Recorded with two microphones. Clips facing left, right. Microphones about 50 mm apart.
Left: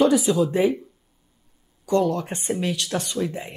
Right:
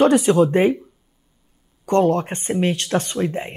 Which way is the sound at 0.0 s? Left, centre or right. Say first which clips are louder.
Right 4 dB; right.